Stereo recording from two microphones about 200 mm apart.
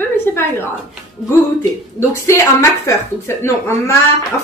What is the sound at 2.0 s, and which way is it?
Speech, 15° left (ahead or behind).